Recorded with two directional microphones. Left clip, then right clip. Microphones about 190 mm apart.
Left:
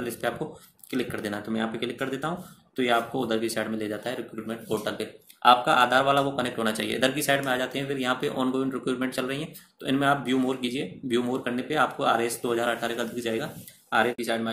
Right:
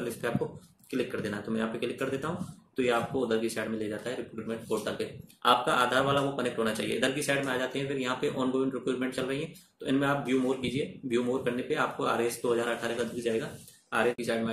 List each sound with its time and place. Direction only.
1.2 s speech: 45° left (ahead or behind)